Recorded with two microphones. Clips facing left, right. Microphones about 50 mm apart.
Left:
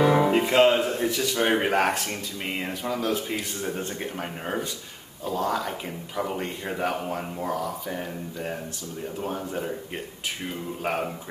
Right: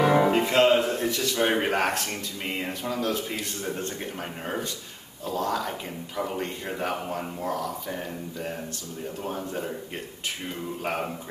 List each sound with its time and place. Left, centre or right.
0.0 s music: centre
0.3 s speech: centre
10.8 s speech: centre